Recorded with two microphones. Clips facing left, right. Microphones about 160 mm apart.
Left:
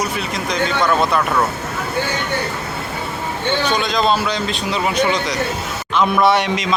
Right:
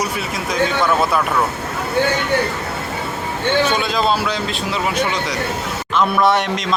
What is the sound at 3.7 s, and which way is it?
A man's voice, 5° right (ahead or behind).